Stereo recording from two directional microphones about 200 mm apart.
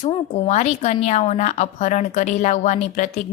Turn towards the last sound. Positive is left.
turn(degrees=35)  # may be behind; listen again after turning